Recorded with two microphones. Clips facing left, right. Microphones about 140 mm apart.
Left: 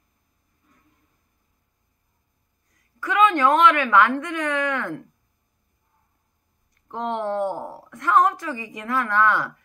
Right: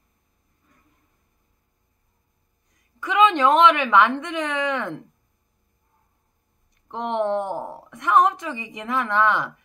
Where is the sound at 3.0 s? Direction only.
20° right (ahead or behind).